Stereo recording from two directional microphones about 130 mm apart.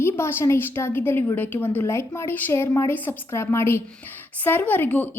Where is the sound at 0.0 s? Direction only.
20° left (ahead or behind).